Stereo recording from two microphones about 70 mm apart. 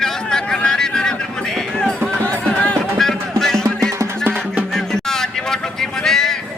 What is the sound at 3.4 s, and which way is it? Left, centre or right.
Music, centre.